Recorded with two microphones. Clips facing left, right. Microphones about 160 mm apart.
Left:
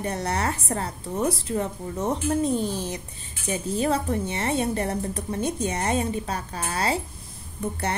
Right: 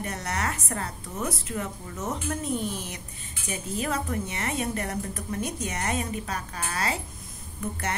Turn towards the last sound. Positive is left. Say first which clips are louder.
# left 4 dB
turn(degrees=30)  # may be behind; listen again after turning